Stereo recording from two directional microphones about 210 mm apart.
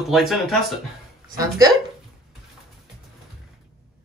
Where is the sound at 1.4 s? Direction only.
15° right (ahead or behind).